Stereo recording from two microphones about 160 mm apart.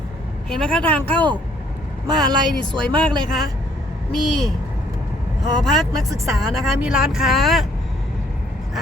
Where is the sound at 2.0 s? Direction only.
25° right (ahead or behind).